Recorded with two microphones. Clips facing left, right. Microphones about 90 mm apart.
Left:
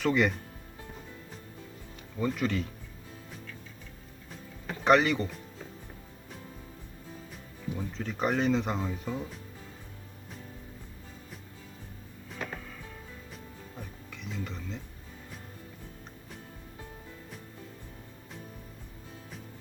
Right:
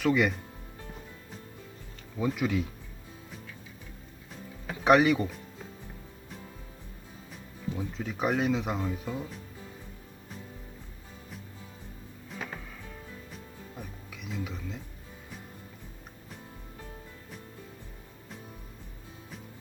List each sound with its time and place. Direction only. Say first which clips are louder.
0.0 s speech: right 1 dB; centre (ahead or behind)
2.1 s speech: right 1 dB; 5° right (ahead or behind)
4.6 s speech: right 2 dB; 5° right (ahead or behind)
7.8 s speech: even; 5° right (ahead or behind)
12.3 s music: left 1 dB; centre (ahead or behind)